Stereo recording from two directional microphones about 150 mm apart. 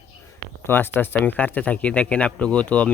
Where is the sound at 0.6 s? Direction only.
15° left (ahead or behind).